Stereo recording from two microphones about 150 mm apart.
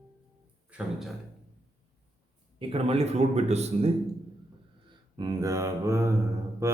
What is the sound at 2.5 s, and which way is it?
A man's voice, 40° right (ahead or behind).